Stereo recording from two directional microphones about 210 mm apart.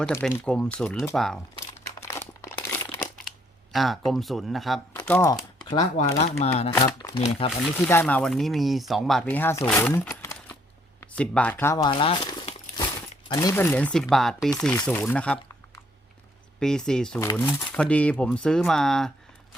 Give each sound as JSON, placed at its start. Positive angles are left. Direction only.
{"t": 0.0, "sound": "speech", "side_deg": 5}
{"t": 2.0, "sound": "crumpling", "side_deg": 15}
{"t": 5.0, "sound": "crumpling", "side_deg": 10}
{"t": 6.1, "sound": "speech", "side_deg": 30}
{"t": 6.7, "sound": "speech", "side_deg": 15}
{"t": 7.9, "sound": "speech", "side_deg": 10}
{"t": 16.6, "sound": "speech", "side_deg": 5}